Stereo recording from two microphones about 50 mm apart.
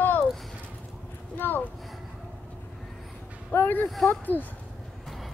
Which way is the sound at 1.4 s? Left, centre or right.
Left.